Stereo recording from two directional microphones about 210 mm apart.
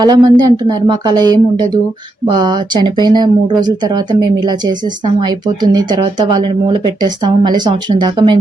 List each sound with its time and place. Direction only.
0.0 s speech: 20° right (ahead or behind)